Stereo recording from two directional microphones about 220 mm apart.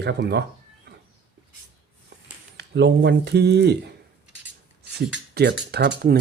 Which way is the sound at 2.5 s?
50° right (ahead or behind).